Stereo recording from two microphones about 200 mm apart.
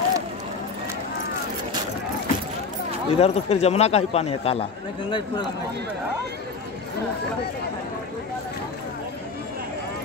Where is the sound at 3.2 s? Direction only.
35° left (ahead or behind).